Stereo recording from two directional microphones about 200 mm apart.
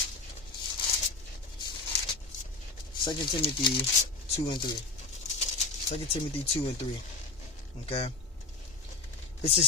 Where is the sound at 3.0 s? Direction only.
25° left (ahead or behind).